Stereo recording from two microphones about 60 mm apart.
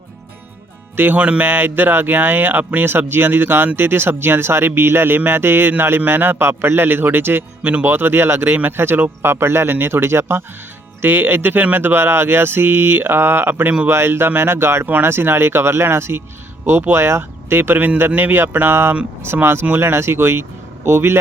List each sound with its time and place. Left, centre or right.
0.9 s speech: right